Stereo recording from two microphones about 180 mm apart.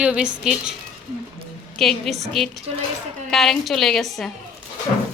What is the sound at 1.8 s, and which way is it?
A woman's voice, centre (ahead or behind).